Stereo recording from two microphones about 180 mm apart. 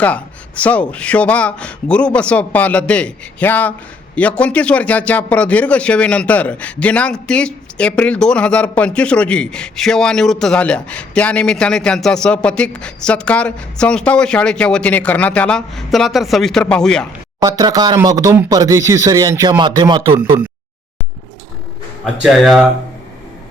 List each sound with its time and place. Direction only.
0.0 s speech: 5° left (ahead or behind)
17.4 s speech: 20° right (ahead or behind)
22.0 s speech: centre (ahead or behind)